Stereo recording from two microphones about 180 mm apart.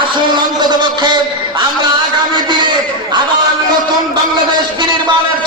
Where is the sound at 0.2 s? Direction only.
25° right (ahead or behind).